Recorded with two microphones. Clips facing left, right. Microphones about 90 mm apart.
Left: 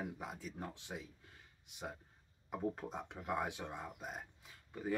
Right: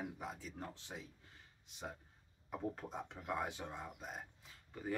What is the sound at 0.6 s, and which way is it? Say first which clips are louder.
Speech: left 2 dB; 15° left (ahead or behind).